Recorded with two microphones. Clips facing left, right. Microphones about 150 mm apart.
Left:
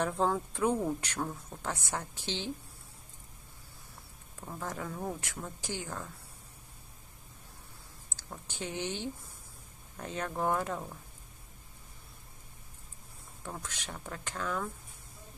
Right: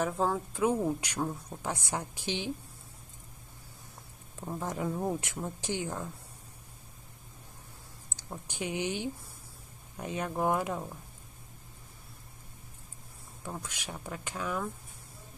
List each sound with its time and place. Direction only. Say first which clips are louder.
0.0 s speech: even; centre (ahead or behind)
4.4 s speech: right 4 dB; 20° right (ahead or behind)
8.2 s speech: right 3 dB; 15° right (ahead or behind)
13.4 s speech: right 2 dB; 10° right (ahead or behind)